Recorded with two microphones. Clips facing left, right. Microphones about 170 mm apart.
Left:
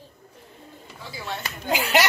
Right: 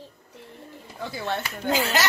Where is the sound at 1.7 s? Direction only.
15° left (ahead or behind).